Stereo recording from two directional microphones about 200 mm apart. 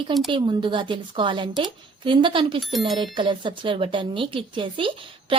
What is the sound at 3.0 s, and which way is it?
A woman's voice, 25° right (ahead or behind).